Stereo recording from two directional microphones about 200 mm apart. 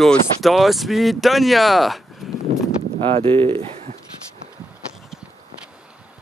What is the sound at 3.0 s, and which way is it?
Speech, 30° right (ahead or behind).